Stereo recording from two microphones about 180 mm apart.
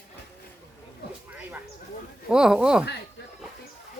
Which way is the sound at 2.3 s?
5° right (ahead or behind).